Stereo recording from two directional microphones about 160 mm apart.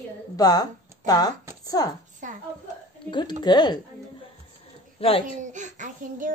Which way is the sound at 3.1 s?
30° left (ahead or behind).